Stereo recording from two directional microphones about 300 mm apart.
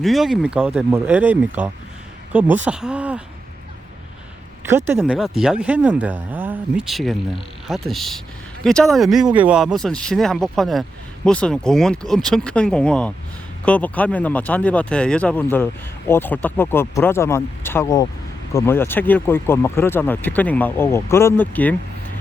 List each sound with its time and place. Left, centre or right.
0.0 s speech: centre
4.7 s speech: centre